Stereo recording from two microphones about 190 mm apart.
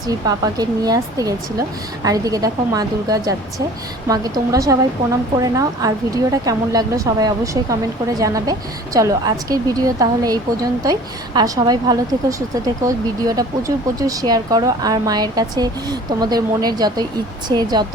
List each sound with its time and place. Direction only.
0.1 s speech: 20° right (ahead or behind)